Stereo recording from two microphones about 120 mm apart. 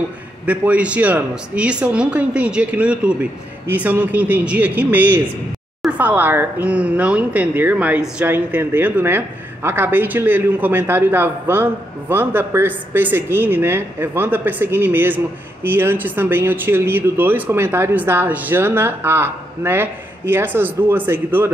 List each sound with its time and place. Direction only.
0.5 s speech: 10° right (ahead or behind)